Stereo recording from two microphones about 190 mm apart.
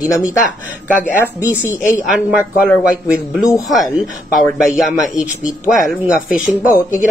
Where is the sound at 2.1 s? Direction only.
5° right (ahead or behind).